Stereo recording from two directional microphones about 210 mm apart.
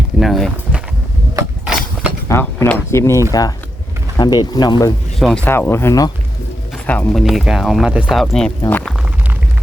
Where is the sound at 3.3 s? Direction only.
15° left (ahead or behind).